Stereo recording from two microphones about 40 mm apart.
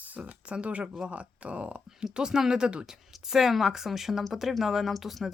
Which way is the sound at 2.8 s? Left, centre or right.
Centre.